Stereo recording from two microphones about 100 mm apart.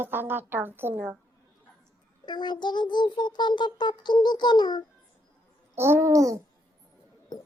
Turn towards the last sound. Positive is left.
turn(degrees=-35)  # may be behind; listen again after turning